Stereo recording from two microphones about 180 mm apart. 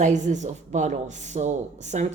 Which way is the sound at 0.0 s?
40° right (ahead or behind).